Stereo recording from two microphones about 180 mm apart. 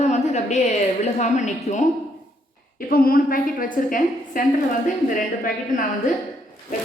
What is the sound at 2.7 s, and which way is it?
A woman's voice, 55° left (ahead or behind).